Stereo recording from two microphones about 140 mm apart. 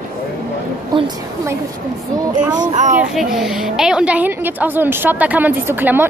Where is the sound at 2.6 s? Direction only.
60° right (ahead or behind).